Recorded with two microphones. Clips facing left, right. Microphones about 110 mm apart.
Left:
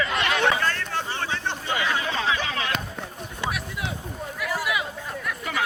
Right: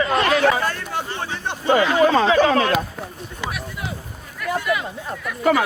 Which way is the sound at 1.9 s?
45° right (ahead or behind).